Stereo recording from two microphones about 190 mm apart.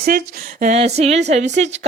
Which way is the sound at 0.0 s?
50° right (ahead or behind).